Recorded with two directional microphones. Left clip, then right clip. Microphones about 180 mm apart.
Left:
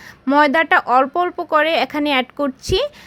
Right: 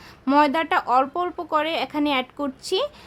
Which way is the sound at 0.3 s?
15° left (ahead or behind).